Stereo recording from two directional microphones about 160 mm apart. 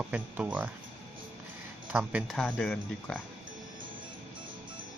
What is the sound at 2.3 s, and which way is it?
Speech, 5° left (ahead or behind).